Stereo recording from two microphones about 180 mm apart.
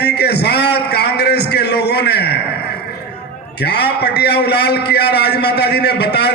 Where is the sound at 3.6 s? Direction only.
65° left (ahead or behind).